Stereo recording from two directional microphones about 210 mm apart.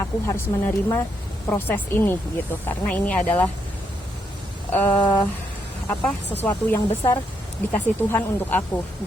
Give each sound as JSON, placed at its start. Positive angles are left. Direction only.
{"t": 0.0, "sound": "a woman's voice", "side_deg": 15}
{"t": 4.9, "sound": "a sound", "side_deg": 20}
{"t": 5.9, "sound": "speech", "side_deg": 5}